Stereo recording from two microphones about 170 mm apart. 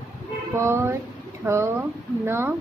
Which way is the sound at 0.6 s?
15° right (ahead or behind).